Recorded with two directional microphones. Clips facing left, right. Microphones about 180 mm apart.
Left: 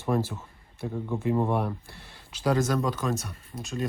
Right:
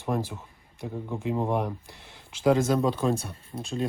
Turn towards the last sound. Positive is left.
turn(degrees=-30)  # may be behind; listen again after turning